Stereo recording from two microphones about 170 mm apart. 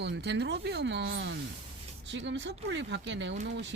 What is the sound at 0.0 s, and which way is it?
Speech, 90° right.